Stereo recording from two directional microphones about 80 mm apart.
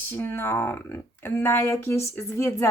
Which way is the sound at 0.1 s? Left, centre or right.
Left.